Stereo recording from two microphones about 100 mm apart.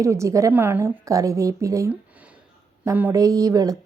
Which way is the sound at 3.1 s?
35° right (ahead or behind).